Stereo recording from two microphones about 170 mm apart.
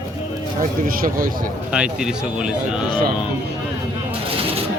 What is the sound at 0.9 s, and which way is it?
Speech, 55° right (ahead or behind).